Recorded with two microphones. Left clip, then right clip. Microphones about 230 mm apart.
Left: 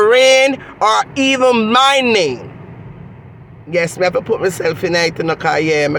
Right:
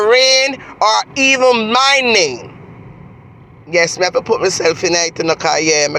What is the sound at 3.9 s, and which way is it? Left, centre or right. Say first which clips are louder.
Speech: right 1 dB; centre.